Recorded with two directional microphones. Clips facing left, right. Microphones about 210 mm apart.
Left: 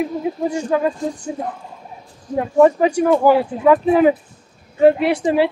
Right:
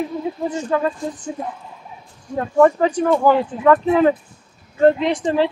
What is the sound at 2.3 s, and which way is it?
Speech, 15° left (ahead or behind).